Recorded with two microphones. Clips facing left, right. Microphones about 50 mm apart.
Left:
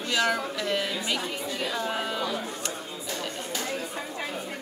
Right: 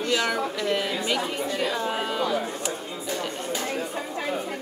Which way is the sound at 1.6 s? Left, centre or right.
Centre.